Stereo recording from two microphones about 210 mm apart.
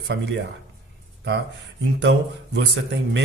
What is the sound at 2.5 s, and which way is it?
Speech, 55° right (ahead or behind).